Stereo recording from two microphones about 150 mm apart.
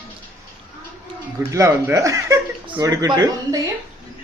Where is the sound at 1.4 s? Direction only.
20° right (ahead or behind).